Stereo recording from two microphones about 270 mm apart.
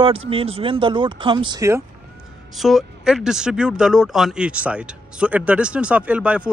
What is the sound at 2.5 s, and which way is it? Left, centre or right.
Speech, centre.